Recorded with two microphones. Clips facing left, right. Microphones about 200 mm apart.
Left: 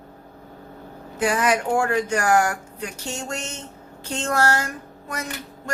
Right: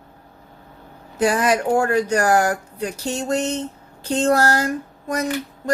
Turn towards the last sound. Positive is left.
turn(degrees=-35)  # may be behind; listen again after turning